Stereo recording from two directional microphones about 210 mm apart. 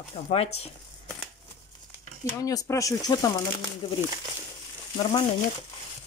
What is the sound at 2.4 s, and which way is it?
Speech, 15° left (ahead or behind).